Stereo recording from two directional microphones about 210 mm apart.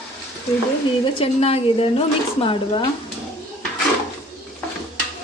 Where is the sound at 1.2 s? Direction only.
30° left (ahead or behind).